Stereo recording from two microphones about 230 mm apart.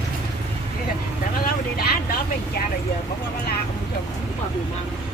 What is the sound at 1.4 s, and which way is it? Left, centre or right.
Speech, left.